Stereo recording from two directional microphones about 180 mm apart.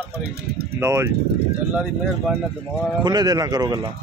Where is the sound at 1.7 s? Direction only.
5° right (ahead or behind).